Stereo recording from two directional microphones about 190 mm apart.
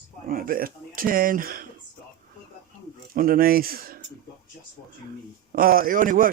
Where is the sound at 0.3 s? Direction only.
50° right (ahead or behind).